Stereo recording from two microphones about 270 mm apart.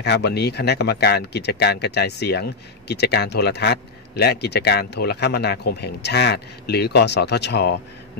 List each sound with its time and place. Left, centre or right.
0.0 s a man's voice: left